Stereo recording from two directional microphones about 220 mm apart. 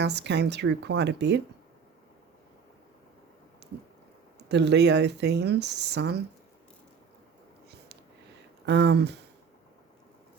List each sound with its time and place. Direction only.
0.0 s speech: 50° right (ahead or behind)
3.6 s squish: 50° right (ahead or behind)
4.4 s speech: 50° right (ahead or behind)
8.6 s speech: 50° right (ahead or behind)